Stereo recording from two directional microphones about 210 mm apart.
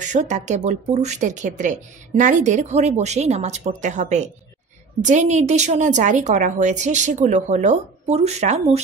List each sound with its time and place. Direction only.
0.0 s speech: 35° right (ahead or behind)